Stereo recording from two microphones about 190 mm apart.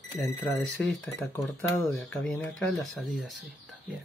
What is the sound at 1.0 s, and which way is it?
Speech, 15° left (ahead or behind).